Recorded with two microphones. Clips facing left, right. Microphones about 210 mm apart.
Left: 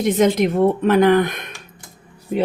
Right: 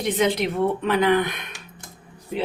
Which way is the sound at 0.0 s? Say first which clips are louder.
Left 6 dB; 45° left (ahead or behind).